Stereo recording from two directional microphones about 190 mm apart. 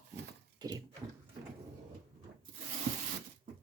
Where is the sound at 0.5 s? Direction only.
20° right (ahead or behind).